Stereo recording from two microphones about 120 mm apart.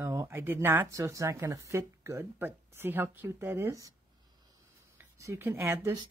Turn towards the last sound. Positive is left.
turn(degrees=-25)  # may be behind; listen again after turning